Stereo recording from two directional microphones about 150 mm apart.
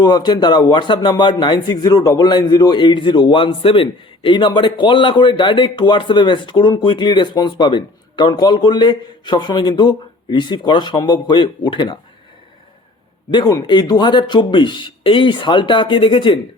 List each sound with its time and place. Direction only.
0.0 s a man's voice: 30° left (ahead or behind)
13.3 s a man's voice: 30° left (ahead or behind)